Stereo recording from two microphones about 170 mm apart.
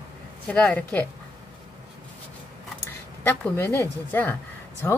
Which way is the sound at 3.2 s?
15° left (ahead or behind).